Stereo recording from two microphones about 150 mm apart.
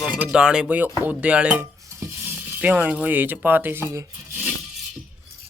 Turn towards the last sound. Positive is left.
turn(degrees=-15)  # may be behind; listen again after turning